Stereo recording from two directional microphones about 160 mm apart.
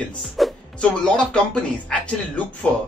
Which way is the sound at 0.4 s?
5° left (ahead or behind).